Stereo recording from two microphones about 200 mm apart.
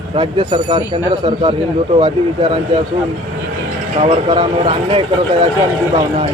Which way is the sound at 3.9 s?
30° right (ahead or behind).